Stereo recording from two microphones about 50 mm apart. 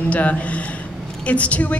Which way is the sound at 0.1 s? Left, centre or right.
Left.